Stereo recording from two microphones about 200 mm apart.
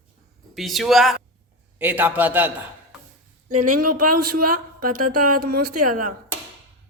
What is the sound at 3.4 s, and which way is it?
A woman's voice, 40° right (ahead or behind).